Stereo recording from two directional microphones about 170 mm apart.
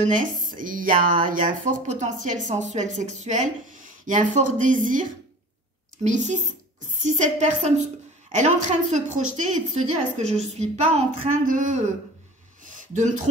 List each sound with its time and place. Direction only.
0.0 s speech: 50° right (ahead or behind)
6.0 s speech: 45° right (ahead or behind)
12.8 s speech: 45° right (ahead or behind)